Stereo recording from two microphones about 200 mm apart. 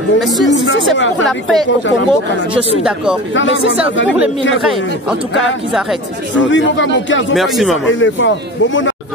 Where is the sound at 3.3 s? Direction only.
65° left (ahead or behind).